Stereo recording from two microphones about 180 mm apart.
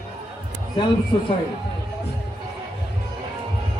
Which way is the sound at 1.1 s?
25° left (ahead or behind).